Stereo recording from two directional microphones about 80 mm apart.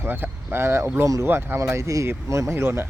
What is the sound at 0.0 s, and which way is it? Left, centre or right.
Speech, right.